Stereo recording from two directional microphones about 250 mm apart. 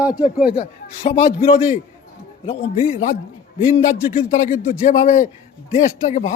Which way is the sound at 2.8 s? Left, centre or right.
Left.